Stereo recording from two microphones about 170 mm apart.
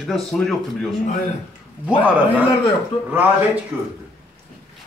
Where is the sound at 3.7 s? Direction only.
10° right (ahead or behind).